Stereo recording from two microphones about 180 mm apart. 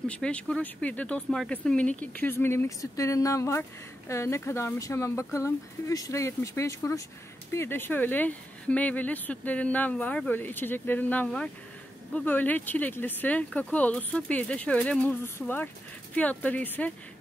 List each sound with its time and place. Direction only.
0.1 s speech: 5° left (ahead or behind)